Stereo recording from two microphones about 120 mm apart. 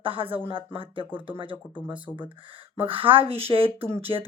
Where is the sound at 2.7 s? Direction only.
50° right (ahead or behind).